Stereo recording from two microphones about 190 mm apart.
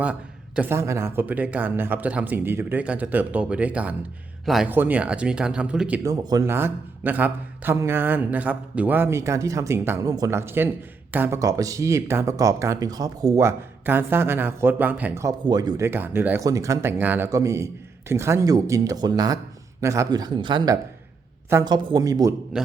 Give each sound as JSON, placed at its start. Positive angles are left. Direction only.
{"t": 0.0, "sound": "speech", "side_deg": -10}
{"t": 6.0, "sound": "speech", "side_deg": -20}